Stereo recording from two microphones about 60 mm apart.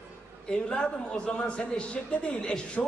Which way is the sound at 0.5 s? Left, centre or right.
Centre.